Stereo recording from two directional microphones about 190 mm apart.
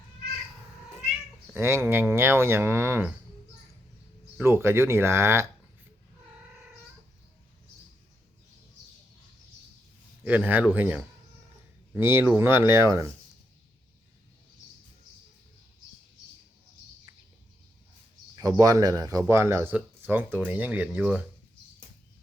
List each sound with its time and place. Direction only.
1.5 s speech: 15° right (ahead or behind)
4.4 s speech: 15° right (ahead or behind)
10.2 s speech: 10° right (ahead or behind)
18.3 s speech: 15° right (ahead or behind)